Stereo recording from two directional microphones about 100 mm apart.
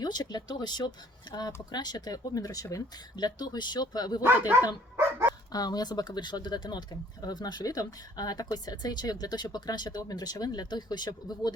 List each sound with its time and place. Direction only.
0.0 s speech: 45° left (ahead or behind)
4.2 s speech: 20° right (ahead or behind)
5.5 s speech: 40° left (ahead or behind)